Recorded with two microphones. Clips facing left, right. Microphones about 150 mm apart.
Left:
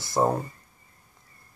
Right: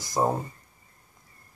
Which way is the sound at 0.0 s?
15° right (ahead or behind).